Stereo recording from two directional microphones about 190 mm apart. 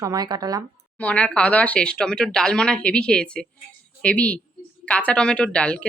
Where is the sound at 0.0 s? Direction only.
20° right (ahead or behind).